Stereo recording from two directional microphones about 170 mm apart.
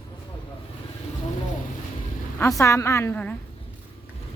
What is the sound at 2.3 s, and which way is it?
A woman's voice, 15° left (ahead or behind).